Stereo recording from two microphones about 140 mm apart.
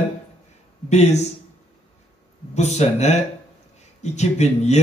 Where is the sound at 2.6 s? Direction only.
55° left (ahead or behind).